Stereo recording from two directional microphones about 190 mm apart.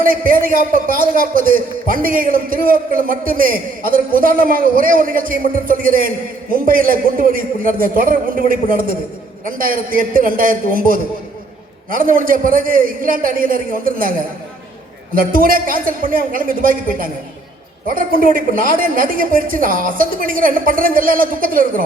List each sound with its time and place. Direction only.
0.0 s a man's voice: 50° right (ahead or behind)
15.1 s a man's voice: 50° right (ahead or behind)